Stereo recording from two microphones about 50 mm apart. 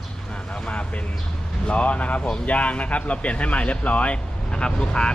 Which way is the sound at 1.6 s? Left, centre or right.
Left.